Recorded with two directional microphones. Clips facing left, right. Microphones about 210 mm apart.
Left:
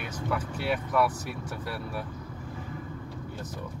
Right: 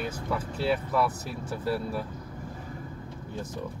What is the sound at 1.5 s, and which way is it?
Speech, 25° right (ahead or behind).